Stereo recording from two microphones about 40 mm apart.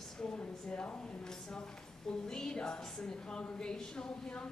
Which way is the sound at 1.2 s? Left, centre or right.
Centre.